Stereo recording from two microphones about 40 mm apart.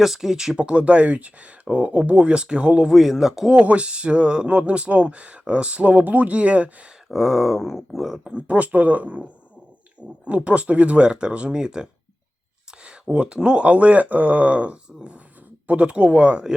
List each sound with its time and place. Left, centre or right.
0.0 s speech: centre
0.5 s speech: right
2.9 s speech: centre
3.5 s speech: right
7.1 s speech: centre
8.2 s speech: right
8.4 s speech: right